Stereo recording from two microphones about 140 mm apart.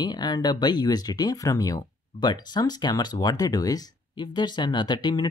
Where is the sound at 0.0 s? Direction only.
30° left (ahead or behind).